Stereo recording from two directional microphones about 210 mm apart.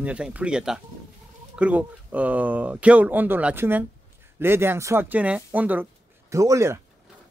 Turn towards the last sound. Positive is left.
turn(degrees=-15)  # may be behind; listen again after turning